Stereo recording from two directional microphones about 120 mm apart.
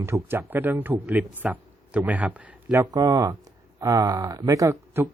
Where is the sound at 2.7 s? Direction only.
30° right (ahead or behind).